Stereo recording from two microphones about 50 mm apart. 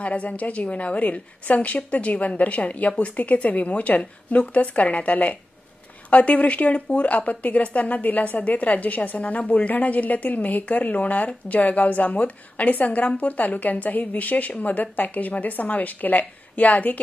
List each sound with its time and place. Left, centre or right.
0.0 s a woman's voice: left